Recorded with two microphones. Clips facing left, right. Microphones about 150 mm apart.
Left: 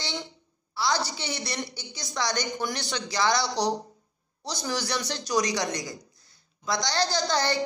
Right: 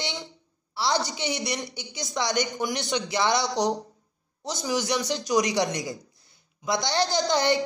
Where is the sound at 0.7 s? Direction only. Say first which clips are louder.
Right 1 dB; 25° right (ahead or behind).